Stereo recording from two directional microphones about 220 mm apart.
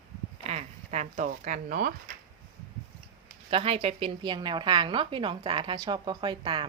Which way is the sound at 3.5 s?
25° right (ahead or behind).